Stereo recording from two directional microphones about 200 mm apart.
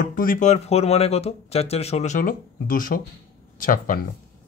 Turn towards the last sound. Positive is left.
turn(degrees=40)  # may be behind; listen again after turning